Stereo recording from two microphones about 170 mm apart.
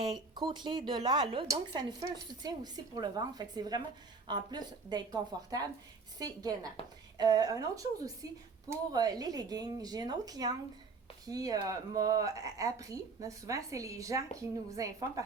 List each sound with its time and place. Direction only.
0.0 s speech: 25° right (ahead or behind)